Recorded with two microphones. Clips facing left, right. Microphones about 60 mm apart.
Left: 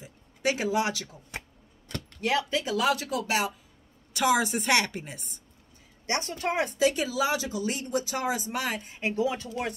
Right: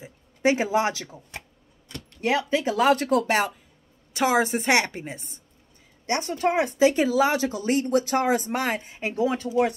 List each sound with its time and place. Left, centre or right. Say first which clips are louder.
0.0 s speech: right 6 dB; right
2.2 s speech: right 4 dB; right
4.1 s a woman's voice: right 3 dB; right
9.1 s speech: right 4 dB; right
9.5 s speech: right 10 dB; centre